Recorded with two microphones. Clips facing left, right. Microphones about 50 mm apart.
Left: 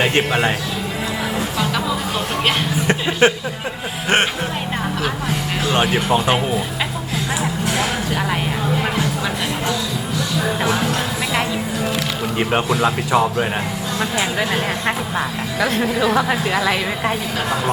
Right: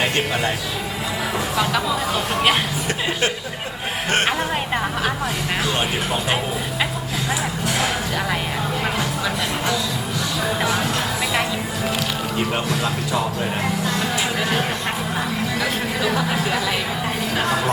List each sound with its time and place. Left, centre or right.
0.0 s speech: left
2.8 s speech: left
12.4 s speech: left